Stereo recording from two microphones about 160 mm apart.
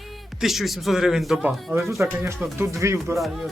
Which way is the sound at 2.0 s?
15° right (ahead or behind).